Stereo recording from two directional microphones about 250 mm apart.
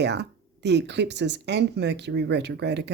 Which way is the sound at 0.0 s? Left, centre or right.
Right.